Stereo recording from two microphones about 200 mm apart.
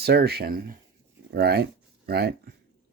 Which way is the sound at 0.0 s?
50° right (ahead or behind).